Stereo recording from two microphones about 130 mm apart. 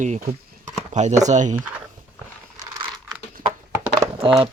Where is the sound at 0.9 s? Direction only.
65° right (ahead or behind).